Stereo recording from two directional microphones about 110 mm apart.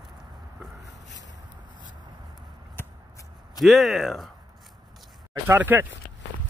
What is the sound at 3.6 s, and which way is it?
Speech, centre (ahead or behind).